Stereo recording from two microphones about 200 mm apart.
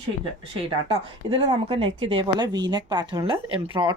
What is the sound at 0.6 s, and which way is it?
Speech, 30° right (ahead or behind).